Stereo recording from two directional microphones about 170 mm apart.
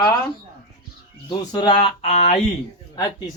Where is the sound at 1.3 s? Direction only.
25° left (ahead or behind).